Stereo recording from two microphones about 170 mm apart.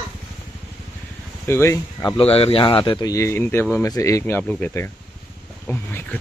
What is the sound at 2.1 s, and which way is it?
Speech, 35° left (ahead or behind).